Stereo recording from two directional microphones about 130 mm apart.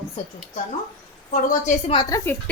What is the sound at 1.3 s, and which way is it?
Speech, 80° left.